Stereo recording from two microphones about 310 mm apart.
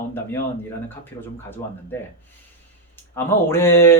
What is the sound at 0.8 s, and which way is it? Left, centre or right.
Speech, centre.